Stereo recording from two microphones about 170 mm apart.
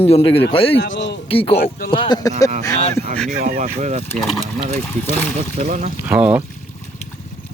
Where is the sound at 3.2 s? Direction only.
50° right (ahead or behind).